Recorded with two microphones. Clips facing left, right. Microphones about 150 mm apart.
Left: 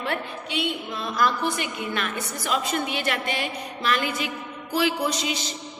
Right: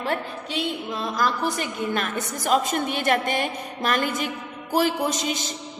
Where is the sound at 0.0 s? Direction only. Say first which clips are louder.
Right 2 dB; 35° right (ahead or behind).